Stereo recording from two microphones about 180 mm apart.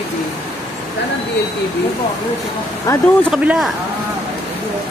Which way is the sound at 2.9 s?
20° left (ahead or behind).